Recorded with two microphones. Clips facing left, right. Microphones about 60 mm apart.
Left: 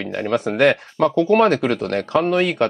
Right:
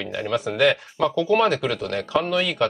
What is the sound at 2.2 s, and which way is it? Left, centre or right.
Speech, left.